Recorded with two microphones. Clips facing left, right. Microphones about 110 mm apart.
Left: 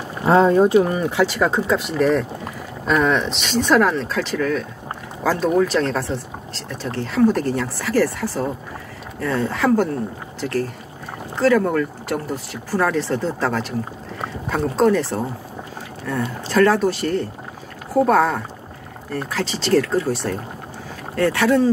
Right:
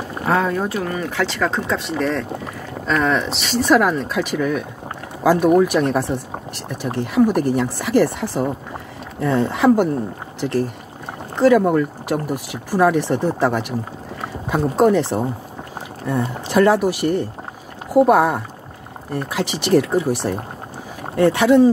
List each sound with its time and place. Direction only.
0.3 s speech: 25° left (ahead or behind); by 21.6 s 20° right (ahead or behind)